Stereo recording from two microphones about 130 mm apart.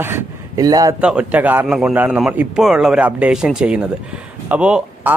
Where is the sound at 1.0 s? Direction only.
10° right (ahead or behind).